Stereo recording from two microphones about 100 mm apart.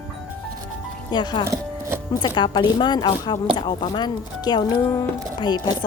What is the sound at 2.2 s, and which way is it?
Speech, 50° left (ahead or behind).